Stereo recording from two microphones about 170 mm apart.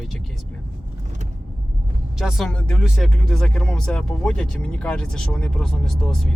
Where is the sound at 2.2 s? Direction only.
Centre (ahead or behind).